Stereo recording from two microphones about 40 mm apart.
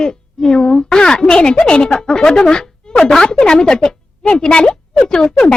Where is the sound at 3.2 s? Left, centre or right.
Left.